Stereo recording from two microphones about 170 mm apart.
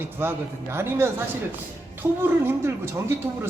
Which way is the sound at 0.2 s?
15° right (ahead or behind).